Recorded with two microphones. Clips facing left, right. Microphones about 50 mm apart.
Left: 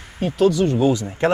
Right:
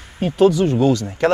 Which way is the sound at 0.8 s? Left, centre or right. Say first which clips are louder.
Right 2 dB; left.